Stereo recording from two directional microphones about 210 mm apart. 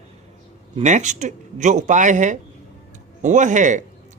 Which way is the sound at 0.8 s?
35° right (ahead or behind).